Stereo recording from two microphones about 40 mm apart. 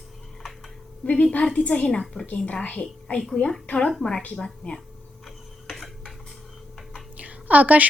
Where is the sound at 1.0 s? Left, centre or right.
Left.